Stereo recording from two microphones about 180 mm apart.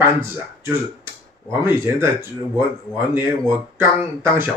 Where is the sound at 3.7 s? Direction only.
10° right (ahead or behind).